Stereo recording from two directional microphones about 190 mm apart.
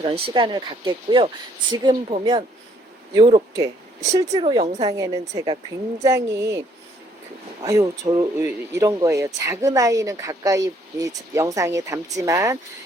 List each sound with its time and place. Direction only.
0.0 s speech: 25° right (ahead or behind)
4.1 s speech: 20° right (ahead or behind)